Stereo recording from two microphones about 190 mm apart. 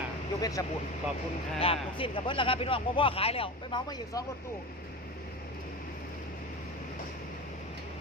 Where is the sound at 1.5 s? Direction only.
30° left (ahead or behind).